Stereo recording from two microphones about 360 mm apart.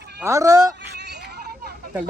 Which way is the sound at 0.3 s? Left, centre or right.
Centre.